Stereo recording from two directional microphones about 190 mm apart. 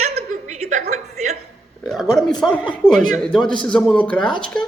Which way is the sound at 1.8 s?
Centre (ahead or behind).